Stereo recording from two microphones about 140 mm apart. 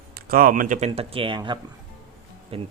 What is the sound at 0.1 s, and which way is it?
Speech, 90° right.